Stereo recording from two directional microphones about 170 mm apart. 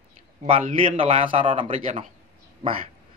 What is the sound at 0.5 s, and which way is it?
A man's voice, 35° right (ahead or behind).